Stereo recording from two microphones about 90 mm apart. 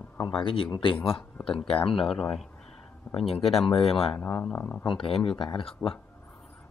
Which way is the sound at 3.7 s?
90° left.